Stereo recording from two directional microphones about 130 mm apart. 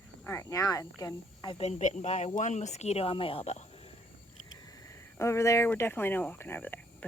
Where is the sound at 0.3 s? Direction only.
25° left (ahead or behind).